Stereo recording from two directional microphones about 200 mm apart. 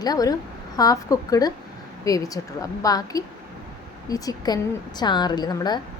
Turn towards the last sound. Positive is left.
turn(degrees=20)  # may be behind; listen again after turning